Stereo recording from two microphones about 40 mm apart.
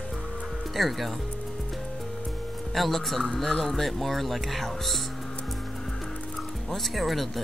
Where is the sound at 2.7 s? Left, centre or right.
Centre.